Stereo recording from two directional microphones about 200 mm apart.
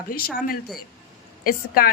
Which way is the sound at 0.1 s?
45° left (ahead or behind).